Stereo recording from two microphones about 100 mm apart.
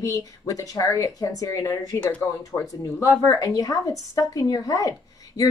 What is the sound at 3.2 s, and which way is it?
A woman's voice, 35° left (ahead or behind).